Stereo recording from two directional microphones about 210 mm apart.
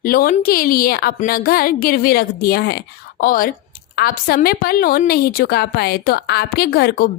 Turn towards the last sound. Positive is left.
turn(degrees=50)  # may be behind; listen again after turning